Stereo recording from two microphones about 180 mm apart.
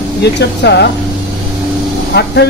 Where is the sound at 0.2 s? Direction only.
70° left (ahead or behind).